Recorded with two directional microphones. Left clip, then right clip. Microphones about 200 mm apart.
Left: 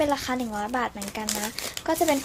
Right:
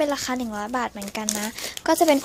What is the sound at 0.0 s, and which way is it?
Speech, 25° right (ahead or behind).